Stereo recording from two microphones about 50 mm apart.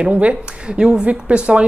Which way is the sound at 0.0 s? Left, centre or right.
Right.